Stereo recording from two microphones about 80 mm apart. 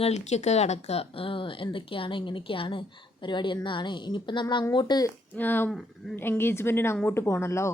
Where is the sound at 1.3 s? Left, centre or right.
Left.